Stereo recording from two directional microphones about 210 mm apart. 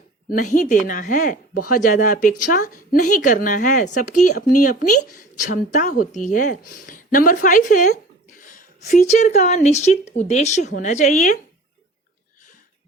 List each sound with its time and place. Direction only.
0.3 s a woman's voice: 40° left (ahead or behind)